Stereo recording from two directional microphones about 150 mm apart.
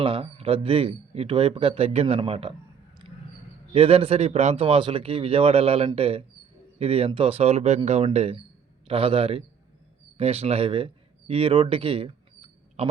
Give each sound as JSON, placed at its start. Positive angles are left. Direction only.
{"t": 0.0, "sound": "speech", "side_deg": -35}
{"t": 3.7, "sound": "speech", "side_deg": -40}